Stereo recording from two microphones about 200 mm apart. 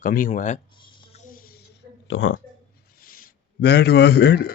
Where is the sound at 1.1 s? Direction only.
45° left (ahead or behind).